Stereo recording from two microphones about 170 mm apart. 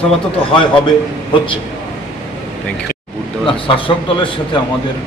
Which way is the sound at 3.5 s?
30° left (ahead or behind).